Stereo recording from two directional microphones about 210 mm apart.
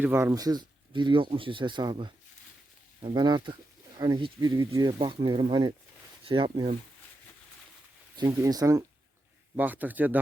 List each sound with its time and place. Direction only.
0.0 s speech: 10° right (ahead or behind)
8.1 s speech: 20° right (ahead or behind)